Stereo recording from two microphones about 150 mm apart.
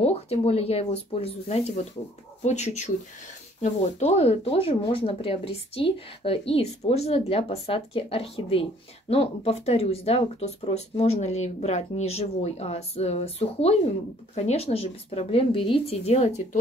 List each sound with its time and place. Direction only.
0.0 s speech: 45° left (ahead or behind)